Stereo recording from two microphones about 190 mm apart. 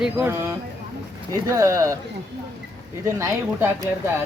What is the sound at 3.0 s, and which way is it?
Speech, 15° right (ahead or behind).